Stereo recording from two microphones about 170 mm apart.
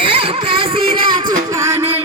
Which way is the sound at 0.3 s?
30° right (ahead or behind).